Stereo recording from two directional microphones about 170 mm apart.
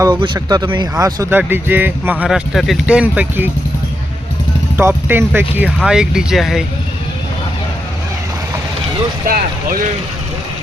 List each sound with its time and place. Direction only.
0.0 s speech: 20° right (ahead or behind)
4.8 s speech: 15° right (ahead or behind)
9.2 s speech: 55° right (ahead or behind)